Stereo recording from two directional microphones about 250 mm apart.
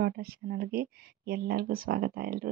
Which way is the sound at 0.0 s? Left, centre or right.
Right.